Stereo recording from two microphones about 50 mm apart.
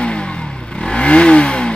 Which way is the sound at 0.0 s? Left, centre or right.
Left.